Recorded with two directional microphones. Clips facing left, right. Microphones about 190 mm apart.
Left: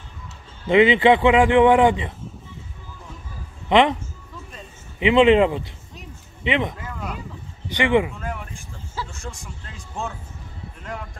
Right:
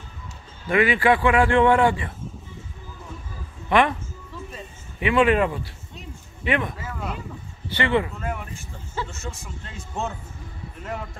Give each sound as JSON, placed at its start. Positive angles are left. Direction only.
{"t": 0.7, "sound": "a man's voice", "side_deg": 20}
{"t": 3.6, "sound": "a woman's voice", "side_deg": 20}
{"t": 5.0, "sound": "a man's voice", "side_deg": 20}
{"t": 6.8, "sound": "a sound", "side_deg": -5}
{"t": 7.7, "sound": "speech", "side_deg": 15}
{"t": 8.2, "sound": "speech", "side_deg": 0}
{"t": 8.9, "sound": "a sound", "side_deg": 0}
{"t": 9.7, "sound": "speech", "side_deg": 0}